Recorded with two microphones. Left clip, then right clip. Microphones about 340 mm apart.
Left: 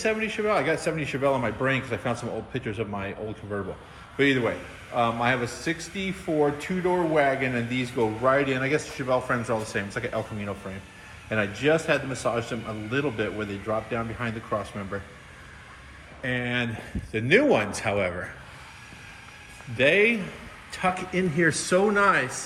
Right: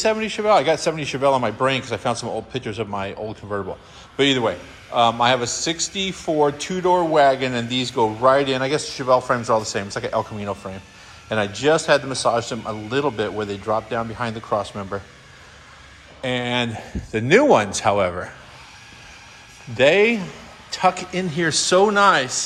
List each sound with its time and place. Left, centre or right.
0.0 s speech: centre
16.2 s speech: centre
17.1 s a man's voice: right
17.3 s speech: centre
19.7 s a man's voice: centre